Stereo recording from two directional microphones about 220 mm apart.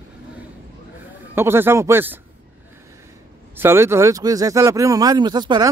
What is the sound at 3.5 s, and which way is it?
Speech, 10° right (ahead or behind).